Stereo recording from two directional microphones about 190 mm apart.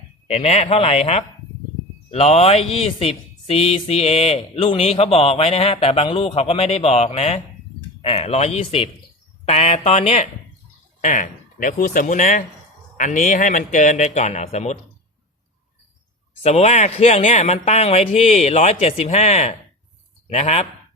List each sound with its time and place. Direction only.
0.3 s speech: 35° left (ahead or behind)
16.4 s speech: 35° left (ahead or behind)